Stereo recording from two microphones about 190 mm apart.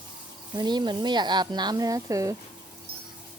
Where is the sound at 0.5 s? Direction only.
20° right (ahead or behind).